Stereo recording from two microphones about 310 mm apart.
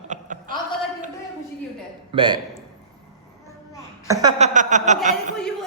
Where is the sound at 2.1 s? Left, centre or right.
Centre.